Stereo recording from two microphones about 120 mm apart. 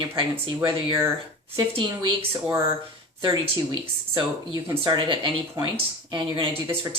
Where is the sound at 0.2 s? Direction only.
45° right (ahead or behind).